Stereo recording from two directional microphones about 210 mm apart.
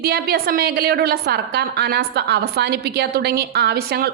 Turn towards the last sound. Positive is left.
turn(degrees=-45)  # may be behind; listen again after turning